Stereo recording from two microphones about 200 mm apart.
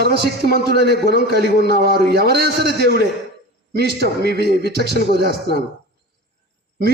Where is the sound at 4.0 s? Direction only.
55° right (ahead or behind).